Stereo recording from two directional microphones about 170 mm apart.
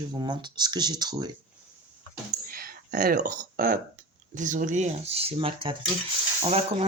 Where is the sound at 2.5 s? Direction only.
60° right (ahead or behind).